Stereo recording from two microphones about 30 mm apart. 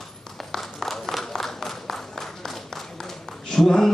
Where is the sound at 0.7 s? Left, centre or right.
Centre.